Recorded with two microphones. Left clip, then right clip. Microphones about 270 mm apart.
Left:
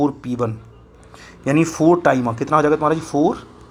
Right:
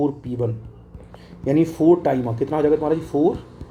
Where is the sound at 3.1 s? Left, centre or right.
Left.